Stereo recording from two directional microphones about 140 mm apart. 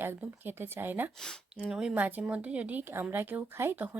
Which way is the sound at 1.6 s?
5° right (ahead or behind).